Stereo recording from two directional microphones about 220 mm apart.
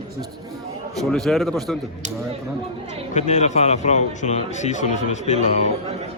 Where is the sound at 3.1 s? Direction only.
30° left (ahead or behind).